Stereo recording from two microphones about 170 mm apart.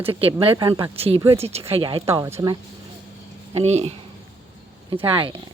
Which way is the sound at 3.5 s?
40° right (ahead or behind).